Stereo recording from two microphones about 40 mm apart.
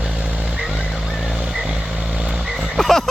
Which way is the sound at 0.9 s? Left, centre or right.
Centre.